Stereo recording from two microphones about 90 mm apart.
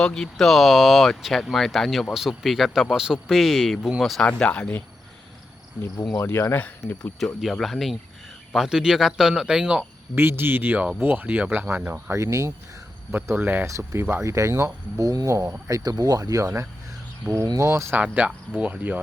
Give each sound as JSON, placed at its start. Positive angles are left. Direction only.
{"t": 0.0, "sound": "speech", "side_deg": 5}
{"t": 4.3, "sound": "speech", "side_deg": 15}
{"t": 6.2, "sound": "speech", "side_deg": 25}
{"t": 6.8, "sound": "speech", "side_deg": 5}
{"t": 10.2, "sound": "speech", "side_deg": -25}
{"t": 13.1, "sound": "speech", "side_deg": -25}
{"t": 13.7, "sound": "speech", "side_deg": -35}
{"t": 18.0, "sound": "speech", "side_deg": -15}